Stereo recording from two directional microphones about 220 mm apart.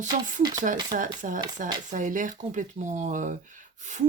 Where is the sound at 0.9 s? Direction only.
35° right (ahead or behind).